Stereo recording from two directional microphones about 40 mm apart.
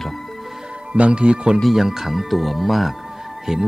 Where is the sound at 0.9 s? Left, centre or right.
Right.